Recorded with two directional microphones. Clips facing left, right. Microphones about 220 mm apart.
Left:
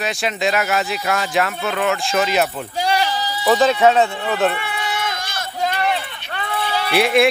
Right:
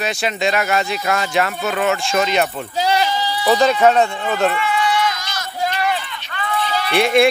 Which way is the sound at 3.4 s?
Centre (ahead or behind).